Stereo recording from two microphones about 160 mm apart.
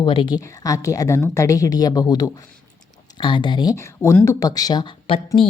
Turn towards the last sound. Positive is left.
turn(degrees=35)  # may be behind; listen again after turning